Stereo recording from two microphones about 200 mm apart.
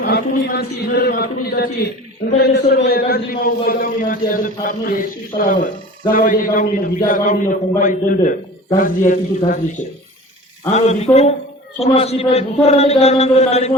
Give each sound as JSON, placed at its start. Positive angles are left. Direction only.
{"t": 0.0, "sound": "a man's voice", "side_deg": 50}
{"t": 5.3, "sound": "speech", "side_deg": 20}
{"t": 6.1, "sound": "a man's voice", "side_deg": 45}
{"t": 10.7, "sound": "a man's voice", "side_deg": 35}